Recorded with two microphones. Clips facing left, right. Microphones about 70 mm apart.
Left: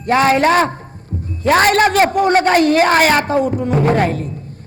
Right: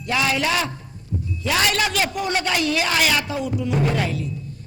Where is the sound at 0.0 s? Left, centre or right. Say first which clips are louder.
Left 9 dB; left.